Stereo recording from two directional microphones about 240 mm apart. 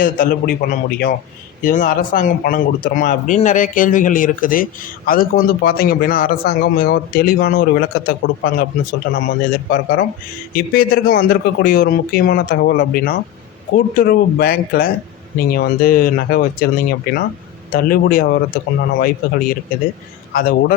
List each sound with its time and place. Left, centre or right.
0.0 s speech: left